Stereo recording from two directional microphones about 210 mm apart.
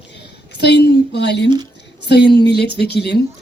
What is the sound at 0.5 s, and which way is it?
A woman's voice, 55° left (ahead or behind).